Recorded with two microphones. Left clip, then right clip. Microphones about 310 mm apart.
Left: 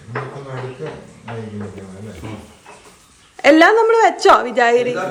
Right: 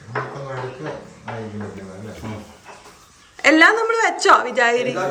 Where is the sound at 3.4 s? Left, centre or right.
Centre.